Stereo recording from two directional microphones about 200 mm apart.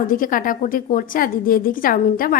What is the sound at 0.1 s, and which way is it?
A woman's voice, 45° left (ahead or behind).